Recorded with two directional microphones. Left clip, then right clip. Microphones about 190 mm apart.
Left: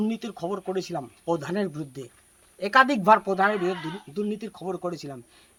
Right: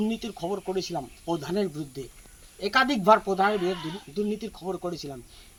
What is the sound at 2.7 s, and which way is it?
Speech, 30° left (ahead or behind).